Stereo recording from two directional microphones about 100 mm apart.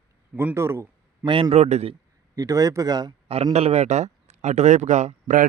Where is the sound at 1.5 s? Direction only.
90° right.